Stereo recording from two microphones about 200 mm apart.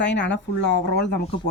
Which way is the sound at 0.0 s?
60° left (ahead or behind).